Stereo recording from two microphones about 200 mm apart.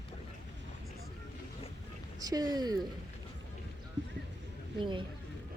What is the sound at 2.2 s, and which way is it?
Speech, 20° right (ahead or behind).